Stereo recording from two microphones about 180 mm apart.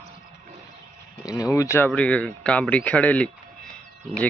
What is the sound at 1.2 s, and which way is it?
Speech, 20° left (ahead or behind).